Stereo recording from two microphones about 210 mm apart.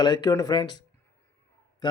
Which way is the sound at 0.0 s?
20° left (ahead or behind).